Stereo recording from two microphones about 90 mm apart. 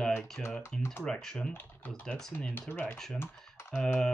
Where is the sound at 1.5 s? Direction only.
20° left (ahead or behind).